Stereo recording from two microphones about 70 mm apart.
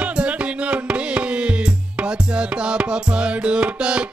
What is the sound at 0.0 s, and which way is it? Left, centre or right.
Music, centre.